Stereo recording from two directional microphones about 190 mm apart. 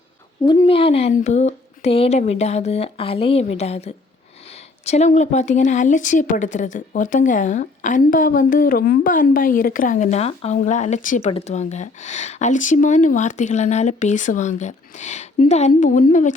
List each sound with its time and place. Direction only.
0.6 s a woman's voice: 30° left (ahead or behind)